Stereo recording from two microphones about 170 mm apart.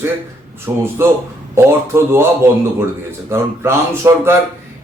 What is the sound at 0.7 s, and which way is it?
Speech, 15° right (ahead or behind).